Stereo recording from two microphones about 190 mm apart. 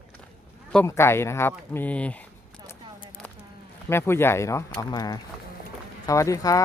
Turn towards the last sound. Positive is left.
turn(degrees=15)  # may be behind; listen again after turning